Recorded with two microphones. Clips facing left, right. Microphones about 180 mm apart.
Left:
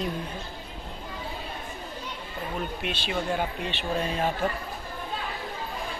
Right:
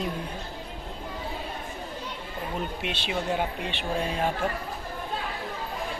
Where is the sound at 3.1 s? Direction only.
15° right (ahead or behind).